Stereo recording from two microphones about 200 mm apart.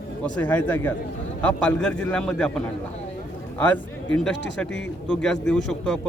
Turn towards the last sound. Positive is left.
turn(degrees=5)  # may be behind; listen again after turning